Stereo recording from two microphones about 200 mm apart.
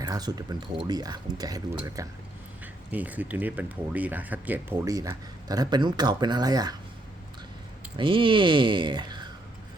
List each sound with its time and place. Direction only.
0.0 s speech: 20° right (ahead or behind)
2.9 s speech: 10° right (ahead or behind)
7.9 s speech: 25° right (ahead or behind)